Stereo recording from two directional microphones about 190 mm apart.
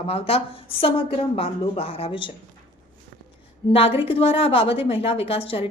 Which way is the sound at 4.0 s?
30° left (ahead or behind).